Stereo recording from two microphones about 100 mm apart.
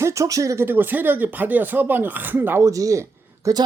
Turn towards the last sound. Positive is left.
turn(degrees=-30)  # may be behind; listen again after turning